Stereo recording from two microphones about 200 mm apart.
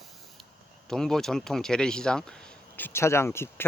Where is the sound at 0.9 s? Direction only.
Centre (ahead or behind).